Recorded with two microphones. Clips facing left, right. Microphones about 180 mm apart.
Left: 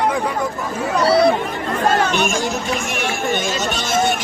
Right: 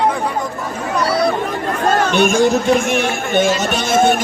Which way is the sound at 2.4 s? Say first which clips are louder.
Right 9 dB; 55° right (ahead or behind).